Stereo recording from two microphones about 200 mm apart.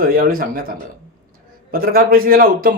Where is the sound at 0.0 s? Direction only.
45° right (ahead or behind).